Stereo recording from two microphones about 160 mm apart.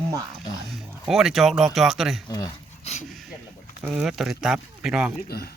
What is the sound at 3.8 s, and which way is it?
Speech, 5° right (ahead or behind).